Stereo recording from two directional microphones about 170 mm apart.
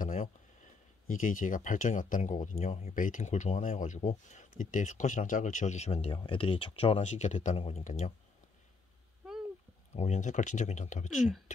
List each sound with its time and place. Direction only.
0.0 s a sound: 50° left (ahead or behind)
1.0 s speech: 50° left (ahead or behind)
9.9 s speech: 40° left (ahead or behind)